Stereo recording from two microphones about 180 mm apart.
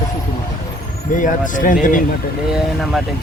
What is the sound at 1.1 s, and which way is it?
Speech, 45° left (ahead or behind).